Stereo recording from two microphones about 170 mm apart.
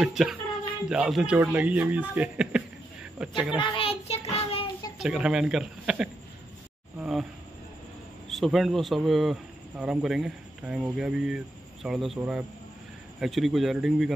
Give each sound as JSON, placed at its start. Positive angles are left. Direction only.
{"t": 0.0, "sound": "speech", "side_deg": -5}
{"t": 3.5, "sound": "child singing", "side_deg": 30}
{"t": 4.9, "sound": "speech", "side_deg": -5}
{"t": 7.0, "sound": "a sound", "side_deg": 0}
{"t": 8.3, "sound": "speech", "side_deg": 0}